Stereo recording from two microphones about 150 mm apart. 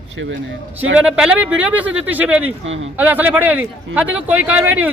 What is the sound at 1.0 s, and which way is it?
Speech, 5° right (ahead or behind).